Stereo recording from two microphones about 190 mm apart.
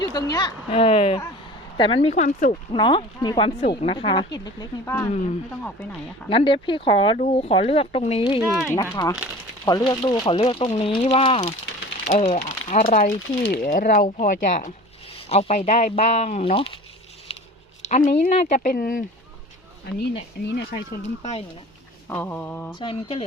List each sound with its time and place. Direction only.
0.0 s speech: 20° left (ahead or behind); by 2.6 s 40° left (ahead or behind)
2.7 s speech: 25° left (ahead or behind)
6.2 s speech: 25° left (ahead or behind)
8.4 s speech: 10° right (ahead or behind)
8.7 s mantra: 15° left (ahead or behind)
9.6 s speech: 20° left (ahead or behind)
17.8 s speech: 40° left (ahead or behind)
20.5 s speech: 55° left (ahead or behind)
21.2 s speech: 35° left (ahead or behind)
22.1 s mantra: 10° left (ahead or behind)
22.7 s speech: 25° left (ahead or behind)